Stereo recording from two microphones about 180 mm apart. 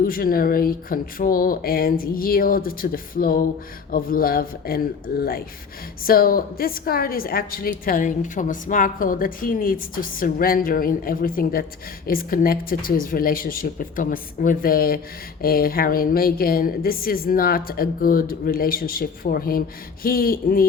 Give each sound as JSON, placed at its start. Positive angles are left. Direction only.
{"t": 0.0, "sound": "speech", "side_deg": 55}